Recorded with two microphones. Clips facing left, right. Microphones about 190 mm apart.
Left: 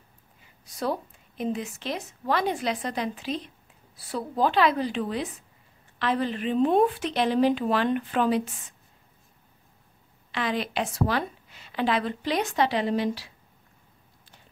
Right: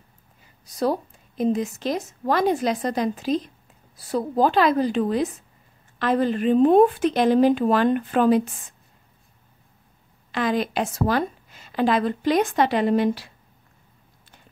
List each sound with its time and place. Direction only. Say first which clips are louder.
0.7 s a woman's voice: right 6 dB; 40° right (ahead or behind)
10.3 s a woman's voice: right 5 dB; 45° right (ahead or behind)